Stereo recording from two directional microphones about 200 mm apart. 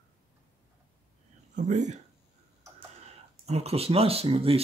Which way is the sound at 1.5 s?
35° right (ahead or behind).